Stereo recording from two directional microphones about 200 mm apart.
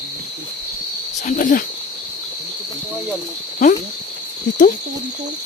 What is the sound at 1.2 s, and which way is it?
Speech, 40° left (ahead or behind).